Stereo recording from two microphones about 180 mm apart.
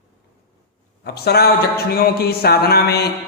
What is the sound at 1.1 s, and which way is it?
Speech, 65° left (ahead or behind).